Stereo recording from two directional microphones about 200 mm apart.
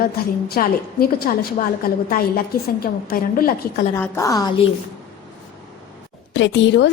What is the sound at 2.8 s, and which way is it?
A woman's voice, 45° left (ahead or behind).